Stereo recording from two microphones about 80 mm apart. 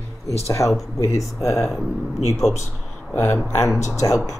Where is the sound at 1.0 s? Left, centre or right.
Left.